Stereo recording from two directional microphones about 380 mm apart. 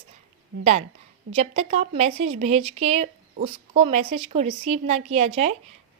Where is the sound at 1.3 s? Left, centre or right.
Centre.